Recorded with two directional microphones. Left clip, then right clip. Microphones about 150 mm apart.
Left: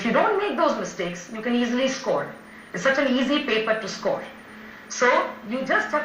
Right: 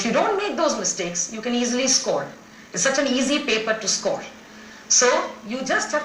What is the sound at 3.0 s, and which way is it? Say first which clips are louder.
Speech: right 1 dB; 25° right (ahead or behind).